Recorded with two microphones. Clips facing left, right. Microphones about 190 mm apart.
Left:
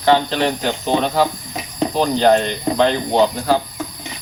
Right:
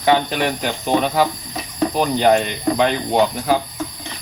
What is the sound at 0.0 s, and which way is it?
Speech, 10° right (ahead or behind).